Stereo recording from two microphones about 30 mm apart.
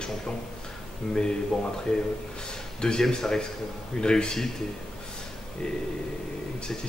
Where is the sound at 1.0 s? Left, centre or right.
Left.